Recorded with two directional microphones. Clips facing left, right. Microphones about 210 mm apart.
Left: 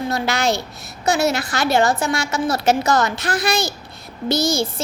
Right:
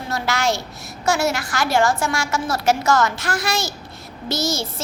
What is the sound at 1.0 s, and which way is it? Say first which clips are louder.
A woman's voice: left 2 dB; 20° left (ahead or behind).